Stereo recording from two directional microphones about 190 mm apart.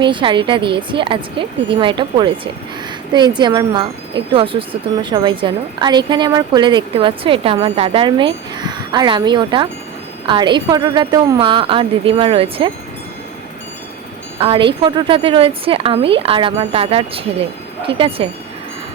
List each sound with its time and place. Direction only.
0.0 s speech: 25° right (ahead or behind)
14.3 s speech: 30° right (ahead or behind)